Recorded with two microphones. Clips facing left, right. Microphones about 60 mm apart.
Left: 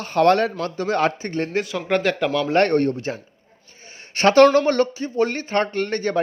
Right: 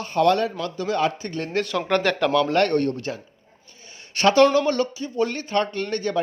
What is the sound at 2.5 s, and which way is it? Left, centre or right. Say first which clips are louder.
A man's voice: left 2 dB; left.